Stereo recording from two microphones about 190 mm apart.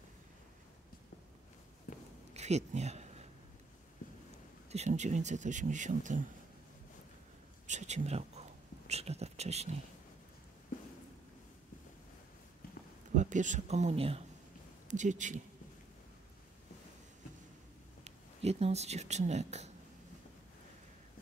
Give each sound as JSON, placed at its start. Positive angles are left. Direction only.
{"t": 2.3, "sound": "a sound", "side_deg": -35}
{"t": 4.0, "sound": "a sound", "side_deg": 45}
{"t": 4.6, "sound": "a man's voice", "side_deg": -35}
{"t": 7.6, "sound": "speech", "side_deg": -40}
{"t": 13.1, "sound": "a man's voice", "side_deg": -40}
{"t": 18.0, "sound": "speech", "side_deg": -35}